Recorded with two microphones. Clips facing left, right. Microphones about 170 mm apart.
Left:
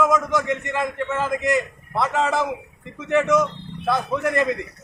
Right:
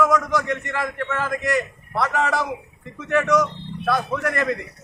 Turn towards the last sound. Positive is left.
turn(degrees=20)  # may be behind; listen again after turning